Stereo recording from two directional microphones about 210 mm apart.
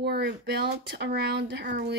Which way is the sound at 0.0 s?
50° right (ahead or behind).